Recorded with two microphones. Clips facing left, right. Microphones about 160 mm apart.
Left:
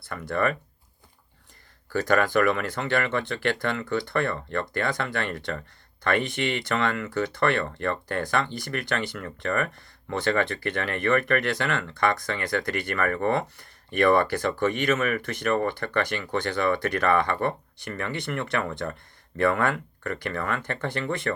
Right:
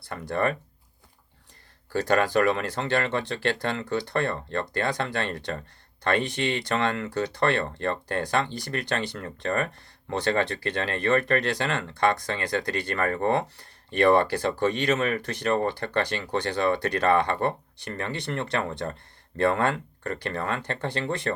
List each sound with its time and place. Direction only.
0.1 s speech: 30° right (ahead or behind)
1.9 s speech: 30° right (ahead or behind)